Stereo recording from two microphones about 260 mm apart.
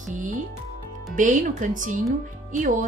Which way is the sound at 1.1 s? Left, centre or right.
Right.